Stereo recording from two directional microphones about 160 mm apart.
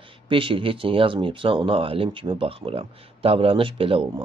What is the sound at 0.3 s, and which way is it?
Speech, 35° right (ahead or behind).